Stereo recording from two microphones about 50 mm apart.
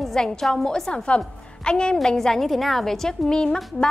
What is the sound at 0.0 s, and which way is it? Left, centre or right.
A woman's voice, centre.